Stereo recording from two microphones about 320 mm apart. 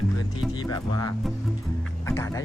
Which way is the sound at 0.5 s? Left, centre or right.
Centre.